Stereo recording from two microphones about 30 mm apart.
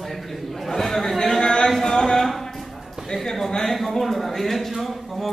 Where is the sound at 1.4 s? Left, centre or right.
Left.